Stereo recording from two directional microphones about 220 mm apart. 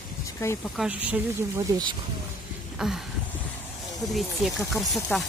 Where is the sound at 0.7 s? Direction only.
5° right (ahead or behind).